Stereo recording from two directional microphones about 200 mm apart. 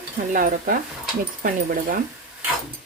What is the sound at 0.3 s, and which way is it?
Speech, 45° right (ahead or behind).